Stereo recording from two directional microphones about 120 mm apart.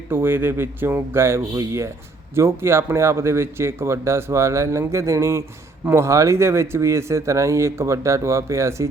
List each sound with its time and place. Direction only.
0.1 s speech: 20° right (ahead or behind)